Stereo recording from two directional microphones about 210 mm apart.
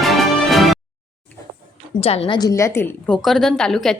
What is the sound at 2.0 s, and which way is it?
A woman's voice, 30° left (ahead or behind).